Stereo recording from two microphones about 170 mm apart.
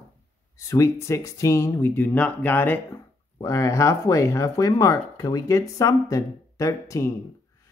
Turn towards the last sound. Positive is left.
turn(degrees=15)  # may be behind; listen again after turning